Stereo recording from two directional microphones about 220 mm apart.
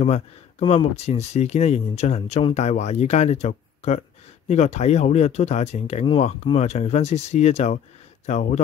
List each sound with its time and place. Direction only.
0.0 s speech: 30° left (ahead or behind)